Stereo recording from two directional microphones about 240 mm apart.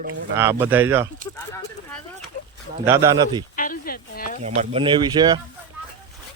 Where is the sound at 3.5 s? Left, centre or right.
Left.